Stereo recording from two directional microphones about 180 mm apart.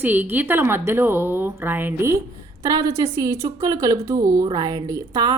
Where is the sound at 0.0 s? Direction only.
10° right (ahead or behind).